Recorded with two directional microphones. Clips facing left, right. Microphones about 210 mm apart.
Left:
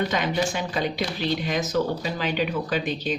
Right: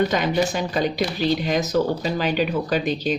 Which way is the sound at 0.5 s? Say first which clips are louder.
Right 4 dB; 40° right (ahead or behind).